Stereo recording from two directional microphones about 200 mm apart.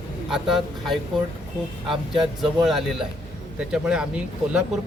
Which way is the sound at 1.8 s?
25° right (ahead or behind).